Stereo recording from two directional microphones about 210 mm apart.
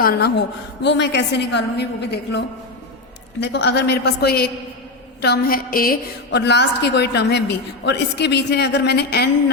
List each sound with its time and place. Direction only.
0.0 s a woman's voice: 50° left (ahead or behind)
3.4 s a woman's voice: 55° left (ahead or behind)